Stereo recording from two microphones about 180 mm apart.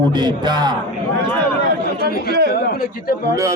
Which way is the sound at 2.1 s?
60° left (ahead or behind).